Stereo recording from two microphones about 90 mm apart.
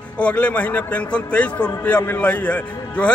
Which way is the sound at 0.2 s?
15° left (ahead or behind).